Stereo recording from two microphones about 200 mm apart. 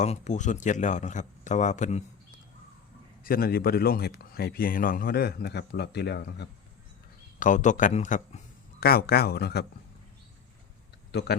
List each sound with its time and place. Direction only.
0.0 s a man's voice: 35° left (ahead or behind)
3.2 s speech: 50° left (ahead or behind)
7.3 s a man's voice: 40° left (ahead or behind)
8.8 s speech: 50° left (ahead or behind)
11.1 s speech: 55° left (ahead or behind)